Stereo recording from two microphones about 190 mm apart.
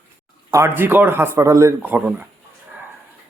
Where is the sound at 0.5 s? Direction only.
10° right (ahead or behind).